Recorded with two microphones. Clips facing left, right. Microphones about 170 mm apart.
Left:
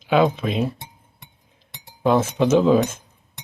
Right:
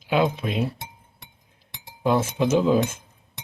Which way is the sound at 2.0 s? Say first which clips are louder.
Left 3 dB; 55° left (ahead or behind).